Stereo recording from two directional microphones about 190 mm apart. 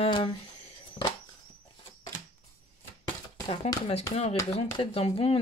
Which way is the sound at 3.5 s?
30° left (ahead or behind).